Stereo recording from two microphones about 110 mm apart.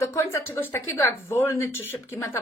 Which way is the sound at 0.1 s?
25° left (ahead or behind).